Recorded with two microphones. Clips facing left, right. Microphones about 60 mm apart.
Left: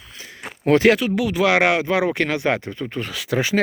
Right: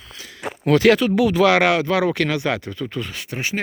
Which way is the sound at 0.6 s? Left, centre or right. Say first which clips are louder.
Left 1 dB; left.